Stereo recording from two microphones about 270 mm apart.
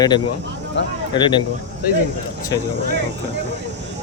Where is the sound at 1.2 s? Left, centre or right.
Centre.